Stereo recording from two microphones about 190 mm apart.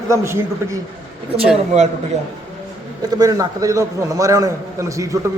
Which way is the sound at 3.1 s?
20° right (ahead or behind).